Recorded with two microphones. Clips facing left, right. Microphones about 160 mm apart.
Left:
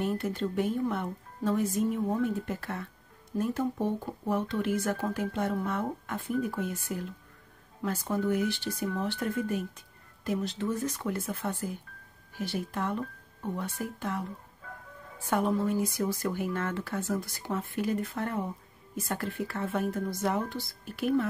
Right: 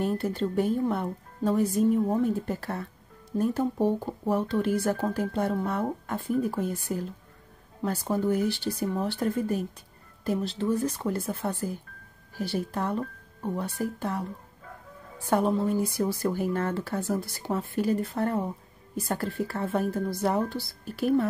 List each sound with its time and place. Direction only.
0.0 s speech: 35° right (ahead or behind)
15.2 s speech: 35° right (ahead or behind)